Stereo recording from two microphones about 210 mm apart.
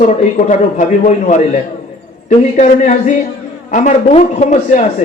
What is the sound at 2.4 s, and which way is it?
A man's voice, 35° left (ahead or behind).